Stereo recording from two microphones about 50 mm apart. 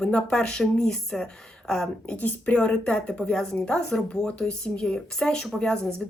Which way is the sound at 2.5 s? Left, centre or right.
Left.